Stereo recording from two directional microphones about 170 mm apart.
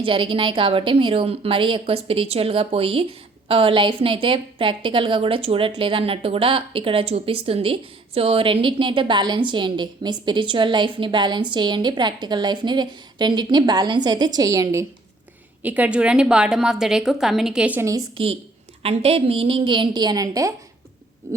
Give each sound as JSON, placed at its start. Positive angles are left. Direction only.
{"t": 0.0, "sound": "a woman's voice", "side_deg": -30}
{"t": 18.8, "sound": "a woman's voice", "side_deg": -35}